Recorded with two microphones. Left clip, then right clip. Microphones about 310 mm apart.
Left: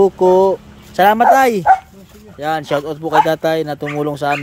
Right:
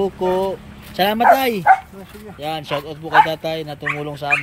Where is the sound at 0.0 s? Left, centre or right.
Centre.